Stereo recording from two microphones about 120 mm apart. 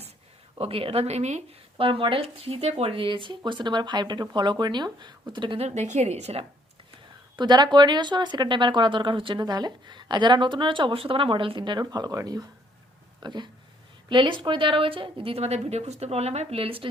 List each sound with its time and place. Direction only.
0.6 s a woman's voice: 50° right (ahead or behind); by 1.5 s 70° right (ahead or behind)
1.8 s speech: 45° right (ahead or behind)
5.5 s a woman's voice: 70° right (ahead or behind)
7.3 s a woman's voice: 35° right (ahead or behind)